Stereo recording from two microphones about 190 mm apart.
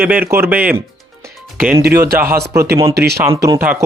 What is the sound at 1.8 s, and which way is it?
Speech, 55° right (ahead or behind).